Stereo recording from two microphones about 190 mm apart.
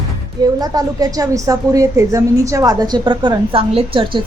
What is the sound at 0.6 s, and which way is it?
A woman's voice, 20° right (ahead or behind).